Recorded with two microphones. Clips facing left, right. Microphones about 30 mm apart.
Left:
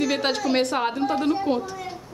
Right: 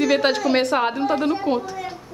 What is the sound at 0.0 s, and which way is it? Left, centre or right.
A woman's voice, centre.